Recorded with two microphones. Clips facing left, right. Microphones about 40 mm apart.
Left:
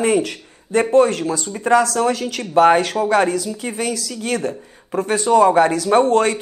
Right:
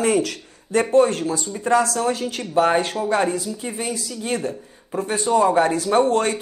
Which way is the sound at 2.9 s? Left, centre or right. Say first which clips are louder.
Left 4 dB; left.